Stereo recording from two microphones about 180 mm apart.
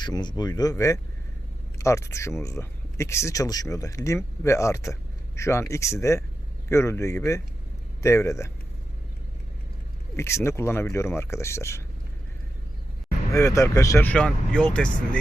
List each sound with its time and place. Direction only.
0.0 s speech: 25° left (ahead or behind)
10.2 s speech: 15° left (ahead or behind)
13.3 s speech: 15° left (ahead or behind)